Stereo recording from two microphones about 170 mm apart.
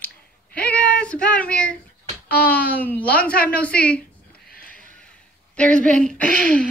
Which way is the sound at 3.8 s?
5° left (ahead or behind).